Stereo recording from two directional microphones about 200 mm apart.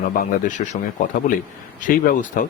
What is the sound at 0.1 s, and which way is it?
Speech, 40° left (ahead or behind).